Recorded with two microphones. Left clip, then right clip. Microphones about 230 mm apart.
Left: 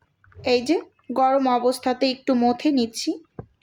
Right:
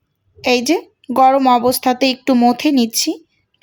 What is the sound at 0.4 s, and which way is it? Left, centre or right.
Speech, right.